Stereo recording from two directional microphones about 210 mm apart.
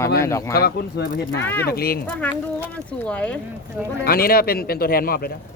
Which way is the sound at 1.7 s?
45° left (ahead or behind).